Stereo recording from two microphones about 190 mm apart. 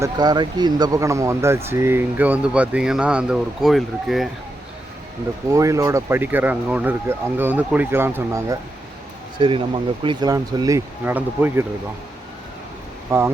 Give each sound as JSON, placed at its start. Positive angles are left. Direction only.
{"t": 0.0, "sound": "speech", "side_deg": -20}
{"t": 5.5, "sound": "speech", "side_deg": -15}
{"t": 9.4, "sound": "speech", "side_deg": -25}
{"t": 13.1, "sound": "speech", "side_deg": -15}